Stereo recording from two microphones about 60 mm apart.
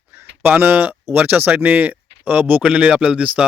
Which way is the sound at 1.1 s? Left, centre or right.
Right.